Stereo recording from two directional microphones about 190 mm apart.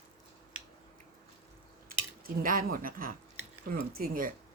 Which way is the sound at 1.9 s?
50° right (ahead or behind).